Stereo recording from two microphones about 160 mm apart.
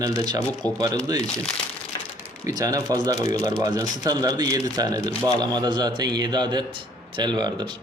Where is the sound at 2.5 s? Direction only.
20° right (ahead or behind).